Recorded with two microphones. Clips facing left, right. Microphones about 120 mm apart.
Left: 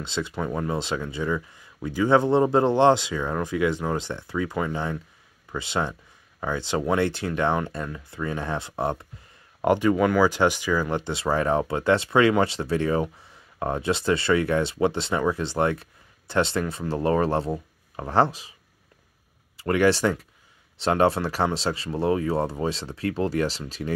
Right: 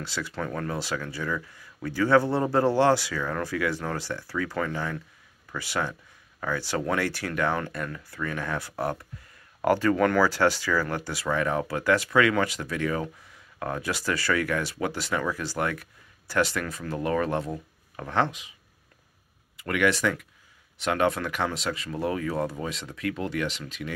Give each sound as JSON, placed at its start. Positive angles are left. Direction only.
{"t": 0.0, "sound": "speech", "side_deg": 20}
{"t": 19.5, "sound": "speech", "side_deg": 30}